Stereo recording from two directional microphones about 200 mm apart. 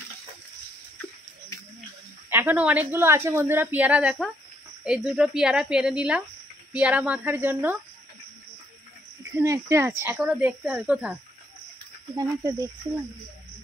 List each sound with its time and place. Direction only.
2.2 s a woman's voice: 10° right (ahead or behind)
9.4 s a woman's voice: 15° right (ahead or behind)
12.2 s a woman's voice: 15° right (ahead or behind)